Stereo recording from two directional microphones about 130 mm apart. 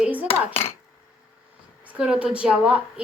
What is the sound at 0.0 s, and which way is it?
Dishes, 10° right (ahead or behind).